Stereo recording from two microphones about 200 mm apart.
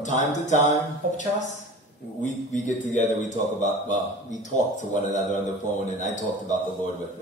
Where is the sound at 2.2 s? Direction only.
35° left (ahead or behind).